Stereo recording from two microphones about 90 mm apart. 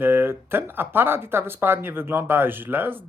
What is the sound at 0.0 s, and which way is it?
Speech, 25° right (ahead or behind).